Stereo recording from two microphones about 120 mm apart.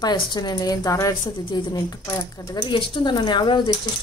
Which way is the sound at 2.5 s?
40° left (ahead or behind).